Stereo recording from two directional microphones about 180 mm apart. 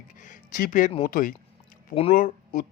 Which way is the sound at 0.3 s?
50° left (ahead or behind).